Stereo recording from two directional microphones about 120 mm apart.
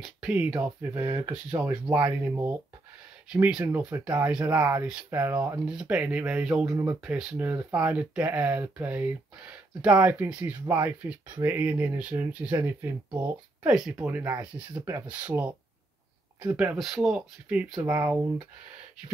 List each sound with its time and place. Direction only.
0.0 s speech: 10° right (ahead or behind)
1.3 s speech: 10° right (ahead or behind)
1.7 s speech: 25° right (ahead or behind)
3.3 s speech: 5° right (ahead or behind)
4.6 s speech: 20° right (ahead or behind)
13.7 s speech: 5° right (ahead or behind)
16.7 s speech: centre (ahead or behind)